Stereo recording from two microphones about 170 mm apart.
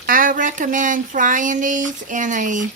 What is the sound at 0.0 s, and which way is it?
Speech, 55° right (ahead or behind).